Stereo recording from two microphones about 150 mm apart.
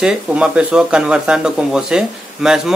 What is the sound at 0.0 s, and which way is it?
Speech, 5° right (ahead or behind).